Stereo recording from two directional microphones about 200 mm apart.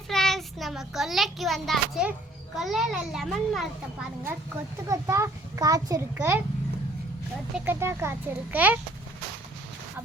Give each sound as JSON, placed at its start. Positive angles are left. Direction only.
{"t": 0.1, "sound": "a child's voice", "side_deg": 0}
{"t": 4.9, "sound": "a child's voice", "side_deg": -15}
{"t": 7.5, "sound": "a child's voice", "side_deg": -10}